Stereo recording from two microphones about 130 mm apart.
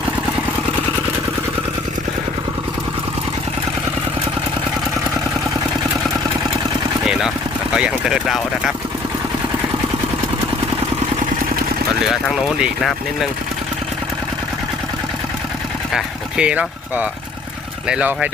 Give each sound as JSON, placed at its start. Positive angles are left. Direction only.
{"t": 7.0, "sound": "vehicle", "side_deg": -5}
{"t": 7.7, "sound": "speech", "side_deg": -5}
{"t": 12.0, "sound": "speech", "side_deg": -5}
{"t": 15.9, "sound": "speech", "side_deg": -5}